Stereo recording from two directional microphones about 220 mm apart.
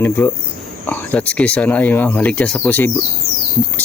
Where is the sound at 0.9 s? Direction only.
5° left (ahead or behind).